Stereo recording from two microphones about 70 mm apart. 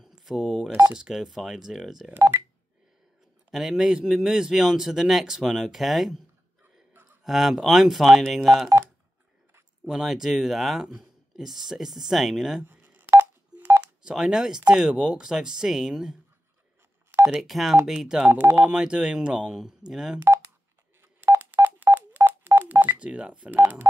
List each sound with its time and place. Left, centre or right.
0.2 s speech: centre
2.1 s speech: right
3.5 s speech: centre
7.2 s speech: centre
9.8 s speech: centre
12.6 s telephone dialing: right
14.0 s speech: centre
17.4 s speech: centre
18.3 s speech: right
18.6 s speech: centre
21.0 s telephone dialing: right
23.0 s speech: centre
23.5 s speech: right